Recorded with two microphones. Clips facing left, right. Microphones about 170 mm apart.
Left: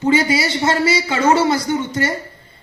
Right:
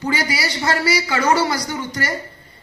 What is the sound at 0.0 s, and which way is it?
Speech, 25° left (ahead or behind).